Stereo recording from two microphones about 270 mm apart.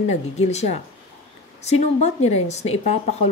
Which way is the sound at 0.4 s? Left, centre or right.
Left.